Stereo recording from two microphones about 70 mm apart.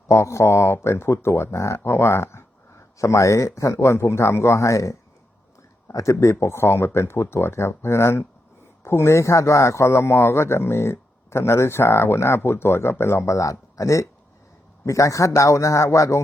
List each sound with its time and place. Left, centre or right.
0.1 s speech: left